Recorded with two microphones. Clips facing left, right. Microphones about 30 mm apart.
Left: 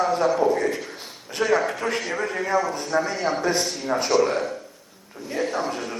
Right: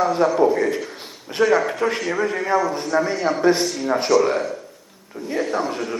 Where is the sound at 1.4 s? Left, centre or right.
Centre.